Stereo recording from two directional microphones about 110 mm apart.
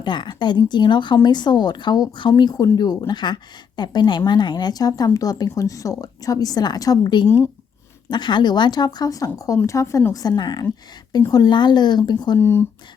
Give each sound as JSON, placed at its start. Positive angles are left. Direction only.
{"t": 0.0, "sound": "speech", "side_deg": 45}
{"t": 7.3, "sound": "speech", "side_deg": 25}
{"t": 8.1, "sound": "speech", "side_deg": 45}
{"t": 12.4, "sound": "speech", "side_deg": 20}